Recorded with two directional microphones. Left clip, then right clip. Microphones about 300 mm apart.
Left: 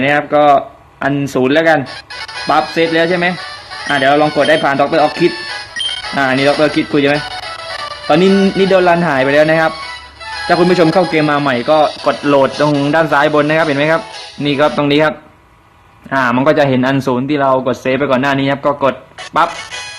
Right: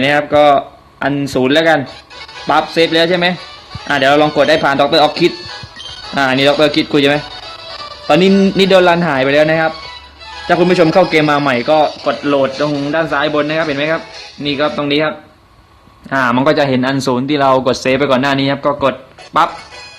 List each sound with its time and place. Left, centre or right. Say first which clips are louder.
0.0 s speech: right 1 dB; centre
5.5 s music: left 10 dB; left
6.1 s speech: right 1 dB; centre
7.2 s music: left 4 dB; centre
8.0 s music: even; centre
8.3 s speech: even; left
8.5 s speech: right 3 dB; centre
9.7 s music: left 4 dB; centre
10.5 s speech: even; centre